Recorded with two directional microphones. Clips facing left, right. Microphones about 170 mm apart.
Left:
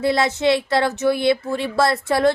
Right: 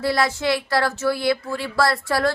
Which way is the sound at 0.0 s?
20° left (ahead or behind).